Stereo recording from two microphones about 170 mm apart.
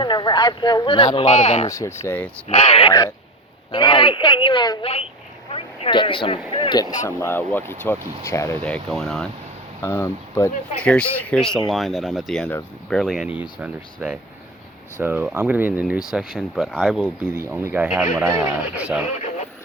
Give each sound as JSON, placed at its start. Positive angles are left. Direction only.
{"t": 0.0, "sound": "speech", "side_deg": 25}
{"t": 1.2, "sound": "speech", "side_deg": 40}
{"t": 1.6, "sound": "speech", "side_deg": 20}
{"t": 2.5, "sound": "speech", "side_deg": 35}
{"t": 7.2, "sound": "speech", "side_deg": 10}
{"t": 9.8, "sound": "a man's voice", "side_deg": 15}
{"t": 17.3, "sound": "a man's voice", "side_deg": -15}